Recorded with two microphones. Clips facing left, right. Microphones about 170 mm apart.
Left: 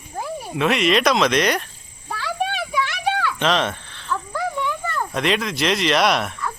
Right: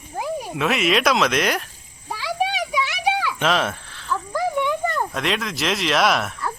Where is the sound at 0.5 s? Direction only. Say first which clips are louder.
Left 3 dB; 5° right (ahead or behind).